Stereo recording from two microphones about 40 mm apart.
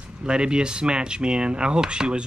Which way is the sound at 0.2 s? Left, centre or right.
Right.